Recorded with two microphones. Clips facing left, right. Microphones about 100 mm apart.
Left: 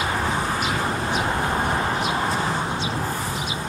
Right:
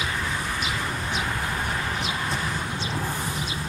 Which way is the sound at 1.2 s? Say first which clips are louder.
Left 6 dB; 40° left (ahead or behind).